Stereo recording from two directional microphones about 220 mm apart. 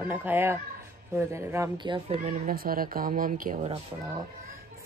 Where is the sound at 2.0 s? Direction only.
35° right (ahead or behind).